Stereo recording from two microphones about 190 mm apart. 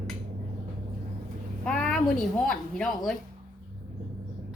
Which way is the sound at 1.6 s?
5° left (ahead or behind).